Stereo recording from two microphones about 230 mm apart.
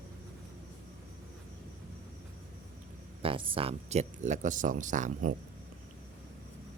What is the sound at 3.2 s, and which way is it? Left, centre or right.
Speech, right.